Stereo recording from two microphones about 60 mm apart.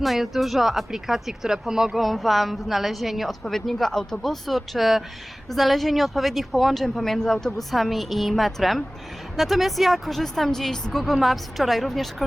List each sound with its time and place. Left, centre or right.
0.0 s speech: centre